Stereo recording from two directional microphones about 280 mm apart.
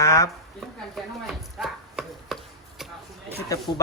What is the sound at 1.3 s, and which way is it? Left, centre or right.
Chopping, centre.